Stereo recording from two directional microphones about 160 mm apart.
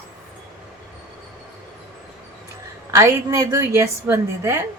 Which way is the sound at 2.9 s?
20° right (ahead or behind).